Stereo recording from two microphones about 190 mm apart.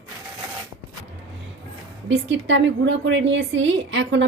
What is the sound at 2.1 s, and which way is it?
A woman's voice, 75° right (ahead or behind).